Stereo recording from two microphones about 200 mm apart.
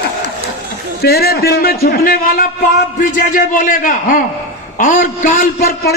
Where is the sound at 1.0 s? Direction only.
50° left (ahead or behind).